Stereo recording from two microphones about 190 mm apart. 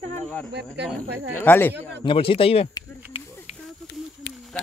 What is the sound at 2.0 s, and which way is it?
Speech, 25° left (ahead or behind).